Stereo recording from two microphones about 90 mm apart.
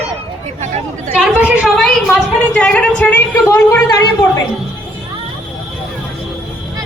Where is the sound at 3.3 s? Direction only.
40° left (ahead or behind).